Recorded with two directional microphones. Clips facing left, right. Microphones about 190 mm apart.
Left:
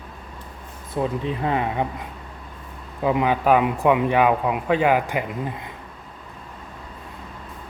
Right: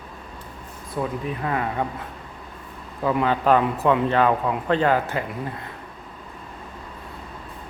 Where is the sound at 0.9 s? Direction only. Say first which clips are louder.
Left 3 dB; 25° left (ahead or behind).